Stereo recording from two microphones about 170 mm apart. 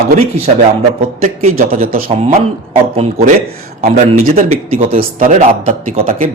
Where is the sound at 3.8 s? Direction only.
40° right (ahead or behind).